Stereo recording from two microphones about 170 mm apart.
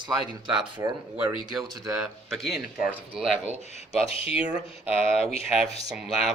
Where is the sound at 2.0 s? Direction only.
Centre (ahead or behind).